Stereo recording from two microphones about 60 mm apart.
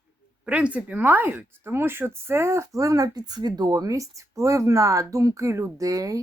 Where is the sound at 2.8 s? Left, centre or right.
Right.